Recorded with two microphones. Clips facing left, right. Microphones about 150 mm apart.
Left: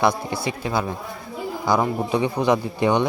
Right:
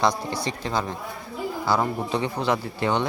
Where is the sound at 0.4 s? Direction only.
10° left (ahead or behind).